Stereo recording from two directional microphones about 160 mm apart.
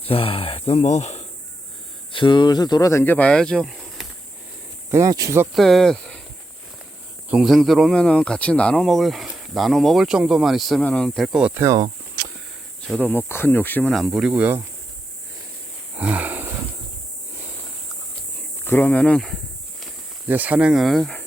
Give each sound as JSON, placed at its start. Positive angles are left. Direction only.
{"t": 0.0, "sound": "speech", "side_deg": 35}
{"t": 2.1, "sound": "speech", "side_deg": 30}
{"t": 4.9, "sound": "speech", "side_deg": -20}
{"t": 5.5, "sound": "speech", "side_deg": 0}
{"t": 7.3, "sound": "speech", "side_deg": -5}
{"t": 11.5, "sound": "a sound", "side_deg": -20}
{"t": 12.9, "sound": "speech", "side_deg": 10}
{"t": 16.0, "sound": "wild animals", "side_deg": -10}
{"t": 18.6, "sound": "speech", "side_deg": 10}
{"t": 20.2, "sound": "speech", "side_deg": -10}